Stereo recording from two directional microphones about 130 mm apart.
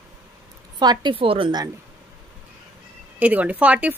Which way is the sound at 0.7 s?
35° right (ahead or behind).